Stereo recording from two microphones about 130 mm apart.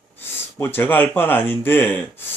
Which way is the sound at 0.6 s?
15° left (ahead or behind).